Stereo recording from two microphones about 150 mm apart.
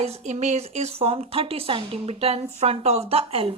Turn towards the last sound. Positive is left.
turn(degrees=-40)  # may be behind; listen again after turning